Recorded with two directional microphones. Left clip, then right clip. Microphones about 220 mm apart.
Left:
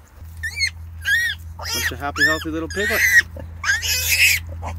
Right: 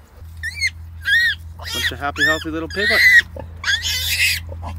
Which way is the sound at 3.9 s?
25° left (ahead or behind).